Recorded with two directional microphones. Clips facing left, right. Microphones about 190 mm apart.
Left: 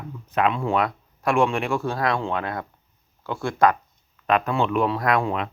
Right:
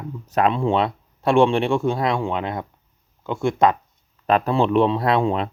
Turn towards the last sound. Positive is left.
turn(degrees=-30)  # may be behind; listen again after turning